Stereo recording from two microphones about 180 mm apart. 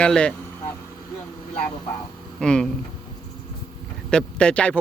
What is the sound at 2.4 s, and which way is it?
Speech, 5° left (ahead or behind).